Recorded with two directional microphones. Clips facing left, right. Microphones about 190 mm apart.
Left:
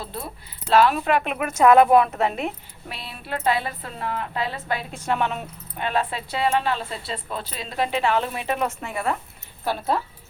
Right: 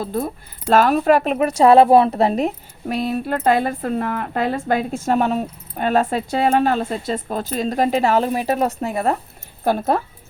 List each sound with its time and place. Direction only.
0.0 s a woman's voice: 45° right (ahead or behind)
9.6 s a woman's voice: 50° right (ahead or behind)